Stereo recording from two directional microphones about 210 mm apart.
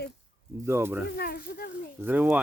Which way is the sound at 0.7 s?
10° right (ahead or behind).